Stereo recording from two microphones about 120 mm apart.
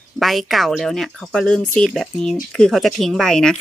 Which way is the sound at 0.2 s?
Centre (ahead or behind).